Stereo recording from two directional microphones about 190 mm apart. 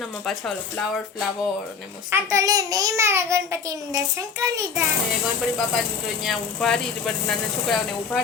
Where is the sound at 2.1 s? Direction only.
15° right (ahead or behind).